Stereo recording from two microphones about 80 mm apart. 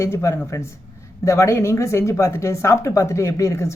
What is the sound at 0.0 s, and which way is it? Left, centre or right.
Speech, left.